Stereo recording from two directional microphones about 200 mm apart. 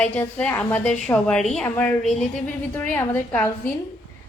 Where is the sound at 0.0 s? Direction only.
10° left (ahead or behind).